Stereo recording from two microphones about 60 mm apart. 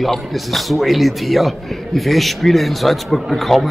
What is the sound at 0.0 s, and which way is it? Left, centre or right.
A man's voice, centre.